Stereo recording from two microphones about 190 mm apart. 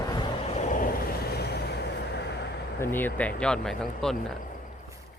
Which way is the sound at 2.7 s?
10° left (ahead or behind).